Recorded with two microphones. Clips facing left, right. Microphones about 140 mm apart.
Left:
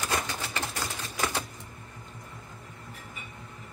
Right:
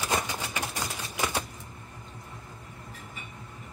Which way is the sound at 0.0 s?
15° right (ahead or behind).